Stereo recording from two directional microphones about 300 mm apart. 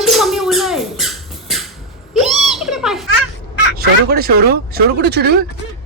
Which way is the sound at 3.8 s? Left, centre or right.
Right.